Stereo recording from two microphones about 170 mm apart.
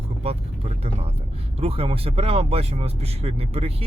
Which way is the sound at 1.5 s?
35° right (ahead or behind).